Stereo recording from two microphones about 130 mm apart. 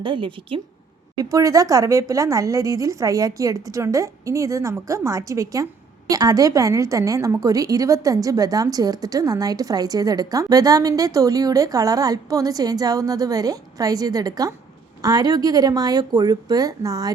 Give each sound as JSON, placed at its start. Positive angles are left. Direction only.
{"t": 0.0, "sound": "a woman's voice", "side_deg": -40}
{"t": 1.2, "sound": "a woman's voice", "side_deg": -25}